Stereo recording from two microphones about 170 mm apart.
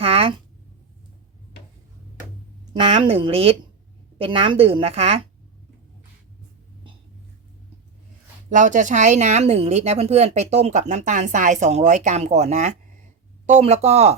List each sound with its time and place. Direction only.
0.0 s a sound: 35° right (ahead or behind)
3.0 s a woman's voice: 30° right (ahead or behind)
8.4 s a woman's voice: 50° right (ahead or behind)